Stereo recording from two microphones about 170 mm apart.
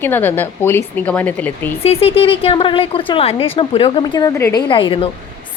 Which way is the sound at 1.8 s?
35° left (ahead or behind).